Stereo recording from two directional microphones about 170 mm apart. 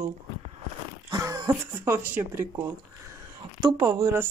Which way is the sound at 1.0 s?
20° right (ahead or behind).